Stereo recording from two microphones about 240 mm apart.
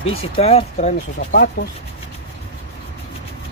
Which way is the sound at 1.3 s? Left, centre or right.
Left.